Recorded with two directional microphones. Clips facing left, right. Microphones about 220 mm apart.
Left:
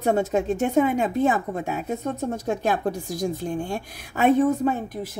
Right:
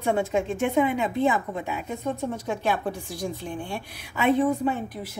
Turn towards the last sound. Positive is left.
turn(degrees=45)  # may be behind; listen again after turning